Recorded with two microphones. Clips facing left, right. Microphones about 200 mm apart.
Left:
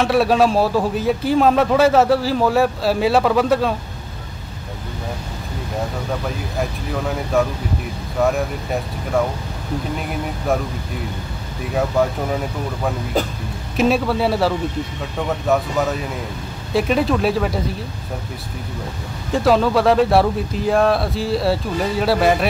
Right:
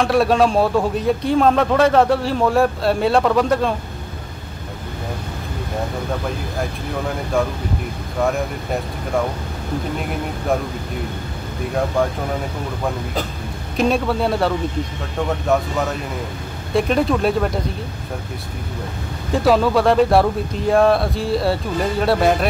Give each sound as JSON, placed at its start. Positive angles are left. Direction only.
{"t": 0.0, "sound": "a man's voice", "side_deg": 0}
{"t": 8.2, "sound": "a man's voice", "side_deg": 0}
{"t": 13.7, "sound": "a man's voice", "side_deg": 5}
{"t": 16.7, "sound": "a man's voice", "side_deg": 0}
{"t": 19.3, "sound": "a man's voice", "side_deg": 0}